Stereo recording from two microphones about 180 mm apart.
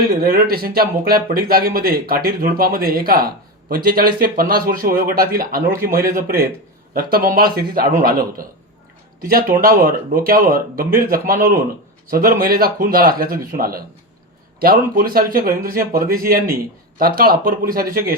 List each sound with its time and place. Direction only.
0.1 s speech: 55° right (ahead or behind)
11.3 s speech: 15° right (ahead or behind)
12.1 s speech: 50° right (ahead or behind)